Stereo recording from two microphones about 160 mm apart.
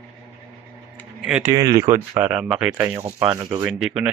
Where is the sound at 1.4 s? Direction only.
20° right (ahead or behind); by 4.1 s 5° right (ahead or behind).